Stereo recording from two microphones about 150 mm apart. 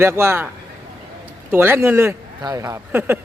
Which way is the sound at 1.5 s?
15° right (ahead or behind).